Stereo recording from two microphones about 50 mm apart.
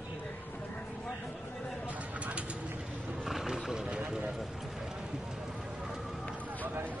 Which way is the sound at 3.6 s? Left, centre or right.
Centre.